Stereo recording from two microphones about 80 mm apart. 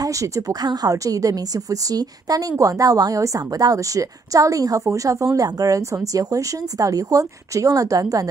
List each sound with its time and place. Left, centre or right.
0.0 s a woman's voice: right